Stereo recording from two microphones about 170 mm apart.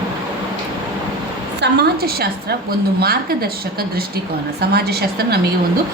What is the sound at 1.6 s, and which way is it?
A woman's voice, 75° right (ahead or behind).